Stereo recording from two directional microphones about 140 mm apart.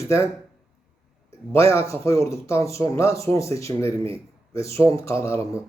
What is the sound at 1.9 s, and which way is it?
Speech, 20° left (ahead or behind).